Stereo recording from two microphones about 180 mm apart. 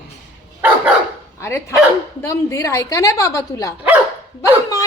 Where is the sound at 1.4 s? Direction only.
15° left (ahead or behind).